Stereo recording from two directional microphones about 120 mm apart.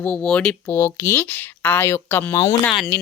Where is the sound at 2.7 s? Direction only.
10° left (ahead or behind).